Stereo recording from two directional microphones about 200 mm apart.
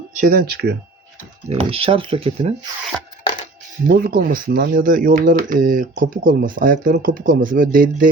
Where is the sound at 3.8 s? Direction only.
45° right (ahead or behind).